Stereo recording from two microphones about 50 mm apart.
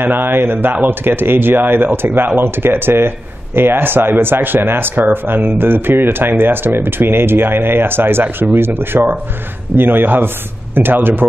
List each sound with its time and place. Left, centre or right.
0.0 s speech: right